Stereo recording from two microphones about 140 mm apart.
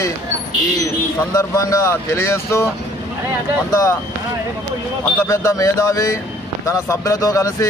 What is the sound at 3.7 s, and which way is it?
Speech, 20° left (ahead or behind).